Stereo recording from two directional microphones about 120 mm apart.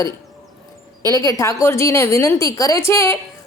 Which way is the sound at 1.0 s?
30° left (ahead or behind).